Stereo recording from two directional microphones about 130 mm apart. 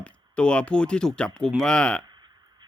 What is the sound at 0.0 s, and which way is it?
Speech, 10° left (ahead or behind).